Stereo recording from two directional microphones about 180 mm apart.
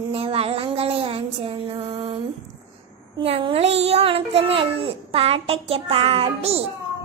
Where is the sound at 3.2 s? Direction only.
30° right (ahead or behind).